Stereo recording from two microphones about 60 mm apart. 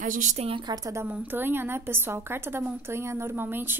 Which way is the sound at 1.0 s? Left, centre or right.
Right.